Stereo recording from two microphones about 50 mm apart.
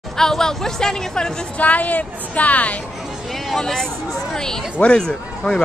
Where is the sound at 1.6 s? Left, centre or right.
Left.